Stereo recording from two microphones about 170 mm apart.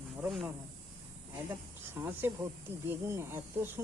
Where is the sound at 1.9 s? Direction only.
15° right (ahead or behind).